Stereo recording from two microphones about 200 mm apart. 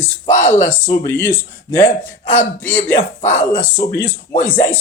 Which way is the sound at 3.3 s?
35° left (ahead or behind).